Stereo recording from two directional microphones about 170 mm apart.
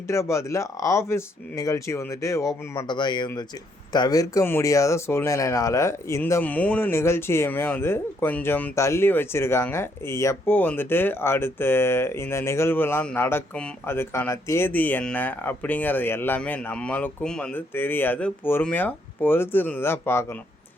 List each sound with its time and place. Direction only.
0.1 s speech: 15° left (ahead or behind)